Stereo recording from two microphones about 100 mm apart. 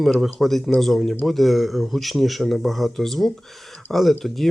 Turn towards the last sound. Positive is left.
turn(degrees=0)  # may be behind; listen again after turning